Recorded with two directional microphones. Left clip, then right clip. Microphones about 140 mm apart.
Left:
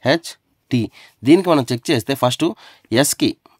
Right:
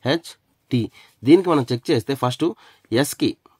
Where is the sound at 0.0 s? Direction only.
30° left (ahead or behind).